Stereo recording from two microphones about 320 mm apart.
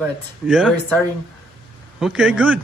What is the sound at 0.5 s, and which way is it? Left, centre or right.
Speech, centre.